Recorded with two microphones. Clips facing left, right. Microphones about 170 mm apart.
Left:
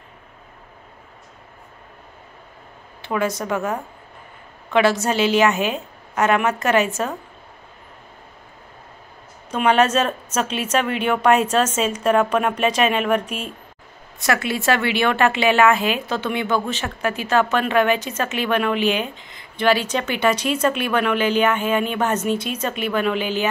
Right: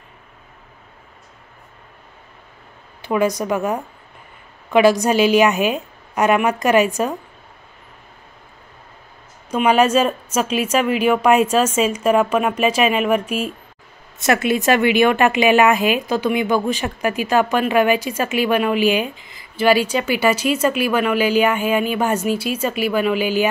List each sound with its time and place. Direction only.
3.1 s a woman's voice: 15° right (ahead or behind)
9.5 s a woman's voice: 10° right (ahead or behind)
14.2 s a woman's voice: 20° right (ahead or behind)